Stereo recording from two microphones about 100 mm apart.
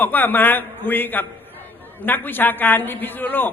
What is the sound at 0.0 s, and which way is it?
A man's voice, 20° left (ahead or behind).